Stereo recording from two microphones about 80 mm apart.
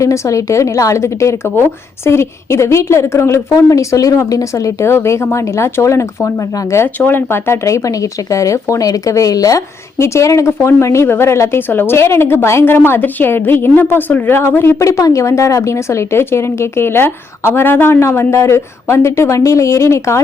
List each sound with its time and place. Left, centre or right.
0.0 s a woman's voice: left
6.8 s a woman's voice: left
14.8 s a woman's voice: left